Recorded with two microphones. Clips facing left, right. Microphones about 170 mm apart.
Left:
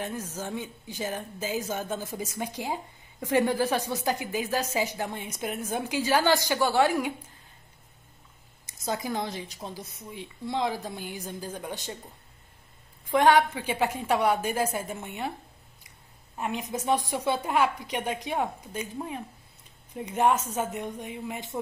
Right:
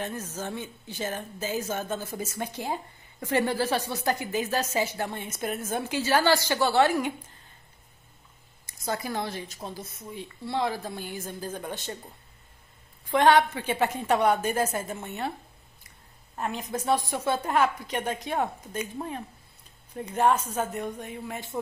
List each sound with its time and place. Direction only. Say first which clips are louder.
0.0 s a woman's voice: even; 10° left (ahead or behind)
8.6 s a woman's voice: even; 20° left (ahead or behind)
13.1 s a woman's voice: even; 10° left (ahead or behind)
16.3 s a woman's voice: even; 15° left (ahead or behind)